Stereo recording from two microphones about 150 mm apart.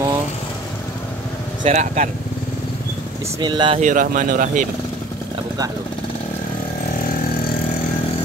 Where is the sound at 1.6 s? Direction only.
55° right (ahead or behind).